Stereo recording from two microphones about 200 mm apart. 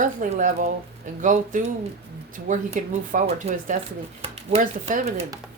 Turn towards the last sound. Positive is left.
turn(degrees=-35)  # may be behind; listen again after turning